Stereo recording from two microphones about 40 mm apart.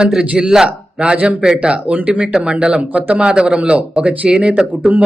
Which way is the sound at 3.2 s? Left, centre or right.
Right.